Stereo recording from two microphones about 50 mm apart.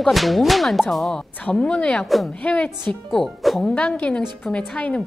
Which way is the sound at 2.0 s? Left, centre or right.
Centre.